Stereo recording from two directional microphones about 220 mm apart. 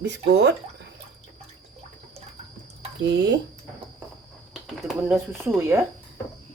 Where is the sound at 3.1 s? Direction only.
55° right (ahead or behind).